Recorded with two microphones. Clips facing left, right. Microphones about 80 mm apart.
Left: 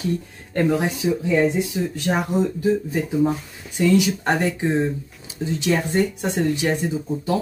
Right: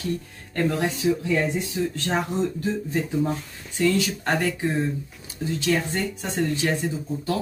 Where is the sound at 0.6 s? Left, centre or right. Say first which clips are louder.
Left 4 dB; centre.